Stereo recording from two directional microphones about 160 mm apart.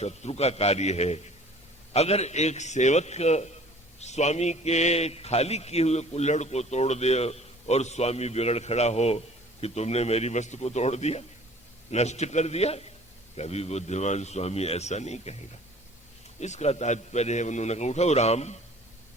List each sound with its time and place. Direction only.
0.0 s a man's voice: 40° left (ahead or behind)
16.4 s a man's voice: 45° left (ahead or behind)